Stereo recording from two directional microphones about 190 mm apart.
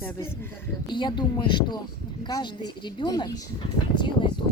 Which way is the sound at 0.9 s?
25° left (ahead or behind).